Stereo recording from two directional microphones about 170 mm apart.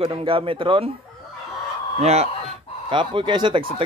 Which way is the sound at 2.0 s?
40° right (ahead or behind).